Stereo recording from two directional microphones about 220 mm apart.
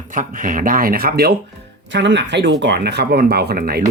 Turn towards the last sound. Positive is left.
turn(degrees=-45)  # may be behind; listen again after turning